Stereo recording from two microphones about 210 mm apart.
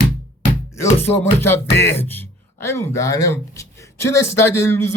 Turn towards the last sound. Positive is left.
turn(degrees=10)  # may be behind; listen again after turning